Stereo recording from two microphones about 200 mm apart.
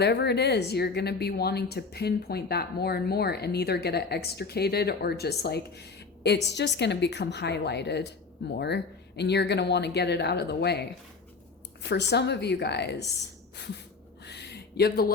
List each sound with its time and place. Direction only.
0.0 s a woman's voice: 55° left (ahead or behind)
11.9 s speech: 55° left (ahead or behind)
14.3 s a sound: 55° left (ahead or behind)